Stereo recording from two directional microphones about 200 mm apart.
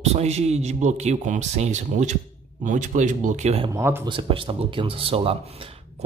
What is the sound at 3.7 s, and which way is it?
Speech, 10° right (ahead or behind).